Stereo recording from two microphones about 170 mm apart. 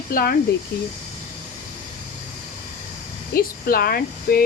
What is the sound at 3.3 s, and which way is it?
Speech, 60° left (ahead or behind).